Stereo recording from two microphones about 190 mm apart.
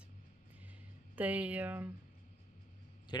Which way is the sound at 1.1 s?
10° right (ahead or behind).